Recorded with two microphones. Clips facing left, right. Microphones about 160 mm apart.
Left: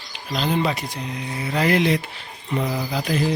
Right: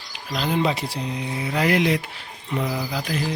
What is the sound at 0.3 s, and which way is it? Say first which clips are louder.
Speech: left 1 dB; 5° right (ahead or behind).